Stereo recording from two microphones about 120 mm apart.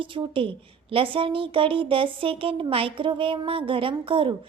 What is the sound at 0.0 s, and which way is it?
A woman's voice, 45° right (ahead or behind).